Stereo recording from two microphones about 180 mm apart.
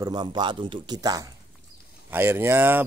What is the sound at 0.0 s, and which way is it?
Speech, 25° right (ahead or behind).